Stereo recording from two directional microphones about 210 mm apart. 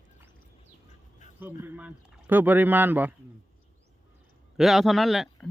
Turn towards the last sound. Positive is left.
turn(degrees=0)  # may be behind; listen again after turning